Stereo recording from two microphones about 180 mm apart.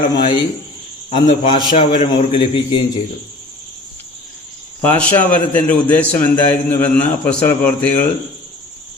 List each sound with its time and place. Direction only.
0.1 s a man's voice: 25° left (ahead or behind)
4.8 s a man's voice: 10° left (ahead or behind)